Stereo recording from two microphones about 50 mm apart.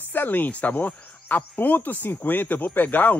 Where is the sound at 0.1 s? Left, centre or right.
Left.